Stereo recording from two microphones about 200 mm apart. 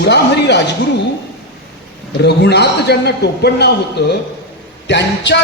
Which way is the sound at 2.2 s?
55° left (ahead or behind).